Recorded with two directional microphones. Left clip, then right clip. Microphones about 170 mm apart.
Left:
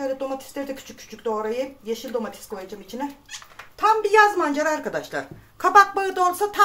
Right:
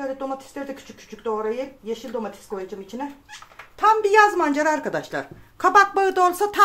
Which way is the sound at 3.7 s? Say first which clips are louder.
Right 1 dB; 40° right (ahead or behind).